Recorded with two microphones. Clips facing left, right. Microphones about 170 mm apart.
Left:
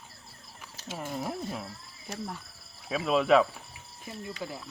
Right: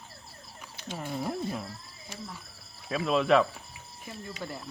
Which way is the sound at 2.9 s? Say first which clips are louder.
Left 1 dB; centre (ahead or behind).